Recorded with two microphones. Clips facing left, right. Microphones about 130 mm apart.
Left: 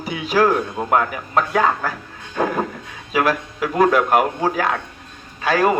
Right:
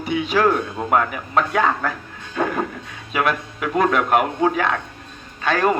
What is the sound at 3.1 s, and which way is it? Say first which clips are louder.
A man's voice: left 2 dB; centre (ahead or behind).